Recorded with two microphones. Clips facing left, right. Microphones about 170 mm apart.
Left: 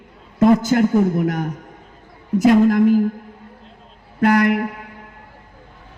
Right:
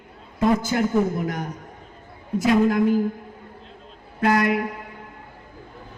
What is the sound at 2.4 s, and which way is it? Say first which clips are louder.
Speech: left 5 dB; 45° left (ahead or behind).